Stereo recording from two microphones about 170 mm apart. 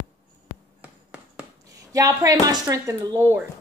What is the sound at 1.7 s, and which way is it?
A woman's voice, 20° right (ahead or behind).